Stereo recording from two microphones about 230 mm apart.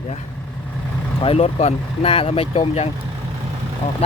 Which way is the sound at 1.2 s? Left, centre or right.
Left.